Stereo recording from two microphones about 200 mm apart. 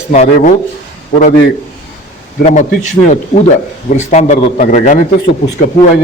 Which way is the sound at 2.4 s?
35° left (ahead or behind).